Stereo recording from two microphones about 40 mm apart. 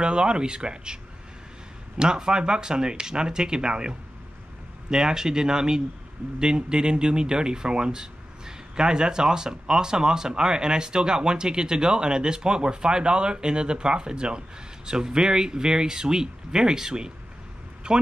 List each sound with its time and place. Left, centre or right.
0.0 s speech: right
2.0 s speech: centre